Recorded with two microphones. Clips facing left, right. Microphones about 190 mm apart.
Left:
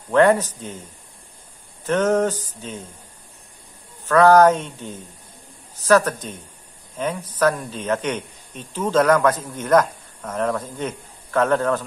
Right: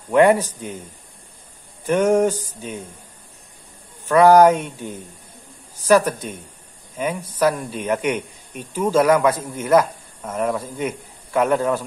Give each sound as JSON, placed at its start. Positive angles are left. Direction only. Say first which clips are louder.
{"t": 0.1, "sound": "speech", "louder": "right 1 dB", "side_deg": -15}
{"t": 1.9, "sound": "speech", "louder": "right 2 dB", "side_deg": -10}
{"t": 4.0, "sound": "speech", "louder": "right 1 dB", "side_deg": -10}